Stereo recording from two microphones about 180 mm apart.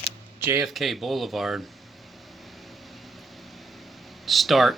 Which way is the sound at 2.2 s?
Centre (ahead or behind).